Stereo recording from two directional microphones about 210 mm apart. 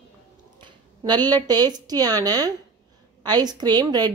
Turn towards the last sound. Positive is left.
turn(degrees=-20)  # may be behind; listen again after turning